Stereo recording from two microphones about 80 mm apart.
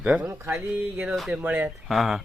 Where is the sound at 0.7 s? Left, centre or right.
Right.